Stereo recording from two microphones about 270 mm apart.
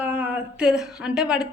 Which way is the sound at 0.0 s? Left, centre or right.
Centre.